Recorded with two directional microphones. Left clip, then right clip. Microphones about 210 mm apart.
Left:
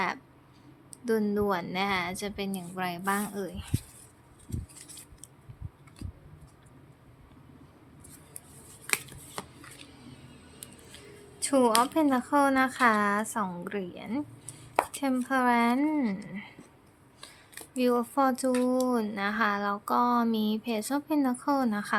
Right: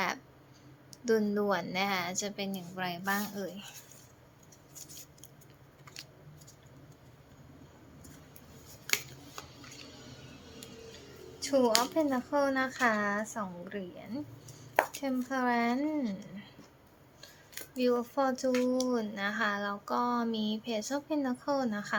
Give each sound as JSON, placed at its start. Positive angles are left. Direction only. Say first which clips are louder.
{"t": 1.0, "sound": "a woman's voice", "louder": "left 1 dB", "side_deg": 10}
{"t": 11.3, "sound": "a sound", "louder": "left 3 dB", "side_deg": 30}
{"t": 11.8, "sound": "a woman's voice", "louder": "left 5 dB", "side_deg": 30}
{"t": 17.7, "sound": "speech", "louder": "left 3 dB", "side_deg": 25}